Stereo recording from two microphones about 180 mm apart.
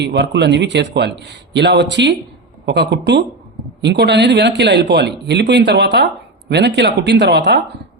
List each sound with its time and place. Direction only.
0.0 s speech: 70° right (ahead or behind)